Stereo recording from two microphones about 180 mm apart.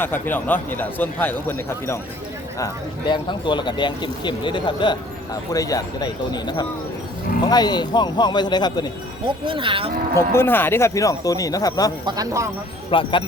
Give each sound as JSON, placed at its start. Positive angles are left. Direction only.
{"t": 0.0, "sound": "a man's voice", "side_deg": 10}
{"t": 3.1, "sound": "speech", "side_deg": 25}
{"t": 9.2, "sound": "speech", "side_deg": -25}
{"t": 10.2, "sound": "a man's voice", "side_deg": 15}
{"t": 12.0, "sound": "speech", "side_deg": -20}
{"t": 12.9, "sound": "speech", "side_deg": 30}